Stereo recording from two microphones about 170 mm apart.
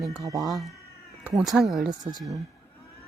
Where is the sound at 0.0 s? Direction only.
Centre (ahead or behind).